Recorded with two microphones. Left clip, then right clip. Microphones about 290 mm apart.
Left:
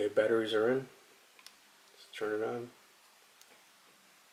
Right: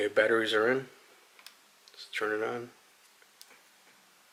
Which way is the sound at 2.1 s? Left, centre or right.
Centre.